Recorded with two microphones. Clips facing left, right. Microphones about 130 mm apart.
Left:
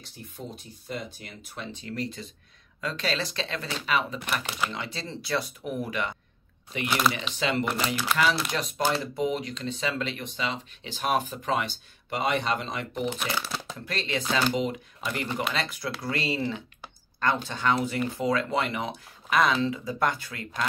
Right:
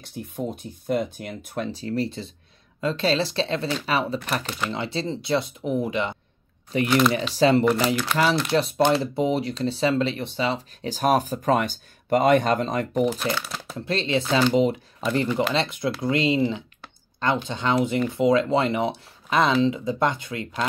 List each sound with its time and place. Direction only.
0.0 s speech: 55° right (ahead or behind)
1.7 s speech: 35° right (ahead or behind)
6.7 s speech: 35° right (ahead or behind)
8.1 s speech: centre (ahead or behind)
8.5 s speech: 30° right (ahead or behind)
13.2 s speech: 10° left (ahead or behind)
13.7 s speech: 30° right (ahead or behind)